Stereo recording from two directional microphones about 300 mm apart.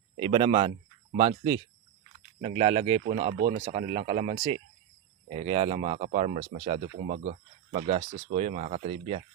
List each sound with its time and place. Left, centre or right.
0.2 s speech: centre